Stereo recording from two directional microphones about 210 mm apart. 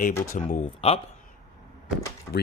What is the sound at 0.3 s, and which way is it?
Speech, 35° left (ahead or behind).